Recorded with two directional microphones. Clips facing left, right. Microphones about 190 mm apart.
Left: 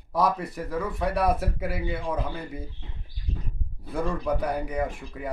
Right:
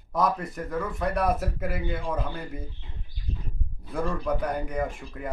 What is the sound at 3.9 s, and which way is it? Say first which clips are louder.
A man's voice: left 1 dB; centre (ahead or behind).